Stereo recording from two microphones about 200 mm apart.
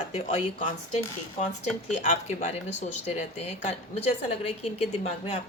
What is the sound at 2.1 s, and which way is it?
A woman's voice, 35° left (ahead or behind).